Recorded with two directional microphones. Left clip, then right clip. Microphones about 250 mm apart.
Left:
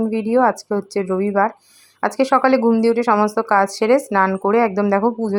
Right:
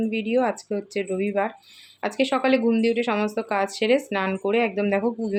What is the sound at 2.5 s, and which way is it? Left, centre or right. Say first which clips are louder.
Speech: left 6 dB; left.